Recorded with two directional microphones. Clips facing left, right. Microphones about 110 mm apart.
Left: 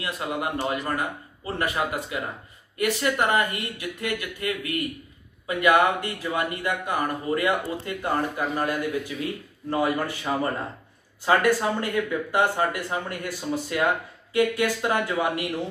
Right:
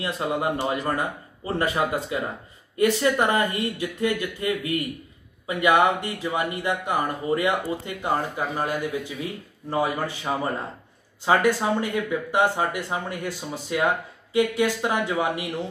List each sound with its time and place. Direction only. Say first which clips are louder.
0.0 s speech: right 3 dB; 25° right (ahead or behind)
11.2 s speech: right 1 dB; 15° right (ahead or behind)